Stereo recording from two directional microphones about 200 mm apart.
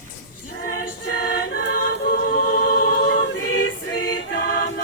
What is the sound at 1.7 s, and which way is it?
Choir, 45° left (ahead or behind).